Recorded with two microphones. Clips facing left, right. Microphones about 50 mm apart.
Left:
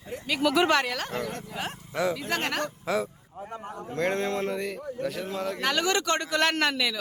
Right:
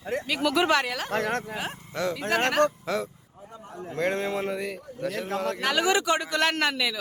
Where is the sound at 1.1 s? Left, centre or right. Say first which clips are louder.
Right 6 dB; right.